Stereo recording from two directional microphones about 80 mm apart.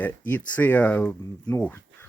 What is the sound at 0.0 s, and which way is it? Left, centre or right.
Speech, left.